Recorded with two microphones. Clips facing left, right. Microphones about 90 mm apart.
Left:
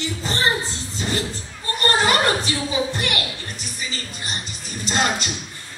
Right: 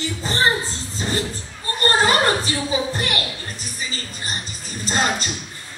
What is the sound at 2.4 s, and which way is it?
Music, 30° right (ahead or behind).